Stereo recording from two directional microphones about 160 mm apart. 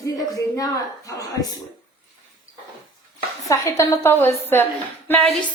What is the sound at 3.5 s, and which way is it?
A woman's voice, 20° left (ahead or behind).